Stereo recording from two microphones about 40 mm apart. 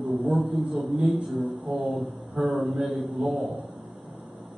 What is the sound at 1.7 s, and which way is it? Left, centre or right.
Speech, centre.